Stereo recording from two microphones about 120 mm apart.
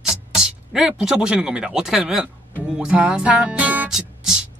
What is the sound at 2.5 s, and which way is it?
Music, 10° right (ahead or behind).